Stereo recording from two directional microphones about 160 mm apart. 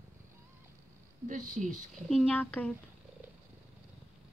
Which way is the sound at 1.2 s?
50° right (ahead or behind).